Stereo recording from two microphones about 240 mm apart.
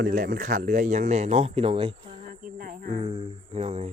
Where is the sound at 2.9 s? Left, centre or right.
Centre.